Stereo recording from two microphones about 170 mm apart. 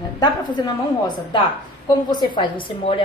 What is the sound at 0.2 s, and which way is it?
A woman's voice, 25° left (ahead or behind).